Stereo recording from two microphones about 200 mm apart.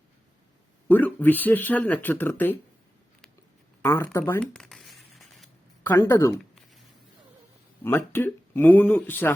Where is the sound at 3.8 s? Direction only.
10° left (ahead or behind).